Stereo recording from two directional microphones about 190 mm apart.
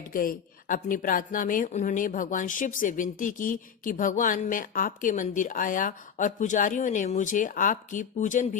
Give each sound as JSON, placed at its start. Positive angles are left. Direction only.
{"t": 0.1, "sound": "speech", "side_deg": 50}